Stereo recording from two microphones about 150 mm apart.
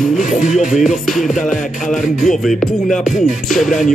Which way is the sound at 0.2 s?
60° left (ahead or behind).